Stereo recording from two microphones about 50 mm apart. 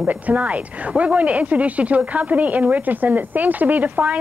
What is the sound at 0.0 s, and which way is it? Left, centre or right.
Speech, right.